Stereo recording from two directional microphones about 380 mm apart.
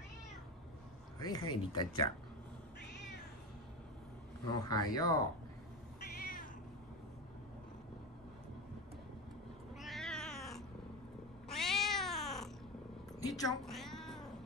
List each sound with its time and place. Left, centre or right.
1.2 s speech: centre
4.5 s speech: centre
5.9 s cat: left
9.8 s cat: centre